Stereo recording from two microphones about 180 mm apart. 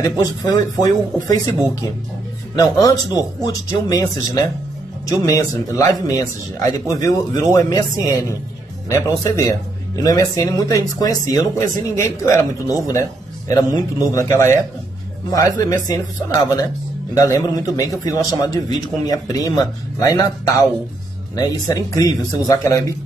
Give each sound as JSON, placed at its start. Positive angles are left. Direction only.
{"t": 0.0, "sound": "a man's voice", "side_deg": 20}
{"t": 2.5, "sound": "a man's voice", "side_deg": 20}
{"t": 17.1, "sound": "a man's voice", "side_deg": 20}